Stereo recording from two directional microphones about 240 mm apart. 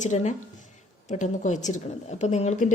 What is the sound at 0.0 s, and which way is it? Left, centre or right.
A woman's voice, left.